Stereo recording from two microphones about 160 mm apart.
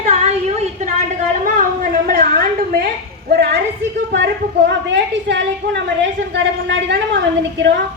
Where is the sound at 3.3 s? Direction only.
90° right.